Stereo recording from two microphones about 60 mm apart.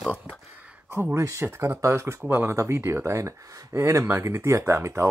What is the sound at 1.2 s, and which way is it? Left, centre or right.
Speech, right.